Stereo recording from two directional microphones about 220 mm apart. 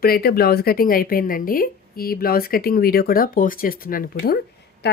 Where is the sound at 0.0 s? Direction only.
45° left (ahead or behind).